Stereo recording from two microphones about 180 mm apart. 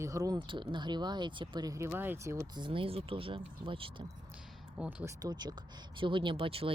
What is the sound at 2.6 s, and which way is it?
Speech, 30° right (ahead or behind).